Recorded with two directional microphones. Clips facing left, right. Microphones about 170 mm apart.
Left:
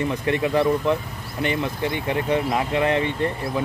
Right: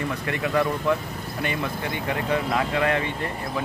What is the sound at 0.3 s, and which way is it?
Speech, 25° left (ahead or behind).